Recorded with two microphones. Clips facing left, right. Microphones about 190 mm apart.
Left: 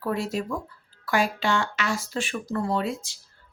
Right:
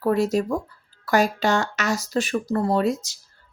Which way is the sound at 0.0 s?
40° right (ahead or behind).